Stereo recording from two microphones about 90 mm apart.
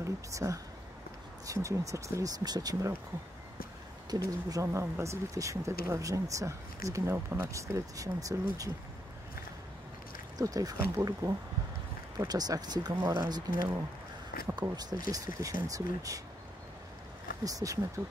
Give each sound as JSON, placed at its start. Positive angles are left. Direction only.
{"t": 0.0, "sound": "speech", "side_deg": -35}
{"t": 4.1, "sound": "speech", "side_deg": -40}
{"t": 10.3, "sound": "speech", "side_deg": -40}
{"t": 12.2, "sound": "speech", "side_deg": -45}
{"t": 14.5, "sound": "speech", "side_deg": -50}
{"t": 17.5, "sound": "speech", "side_deg": -40}